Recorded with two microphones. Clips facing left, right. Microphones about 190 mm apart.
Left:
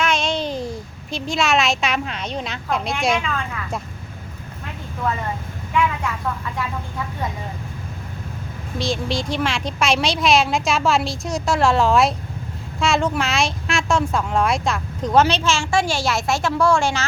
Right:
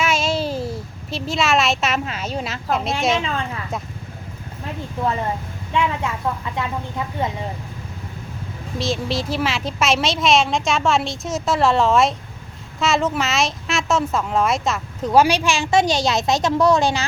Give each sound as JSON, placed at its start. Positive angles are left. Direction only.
{"t": 0.0, "sound": "a sound", "side_deg": -5}
{"t": 3.2, "sound": "speech", "side_deg": -30}
{"t": 5.7, "sound": "speech", "side_deg": -25}
{"t": 8.8, "sound": "speech", "side_deg": 0}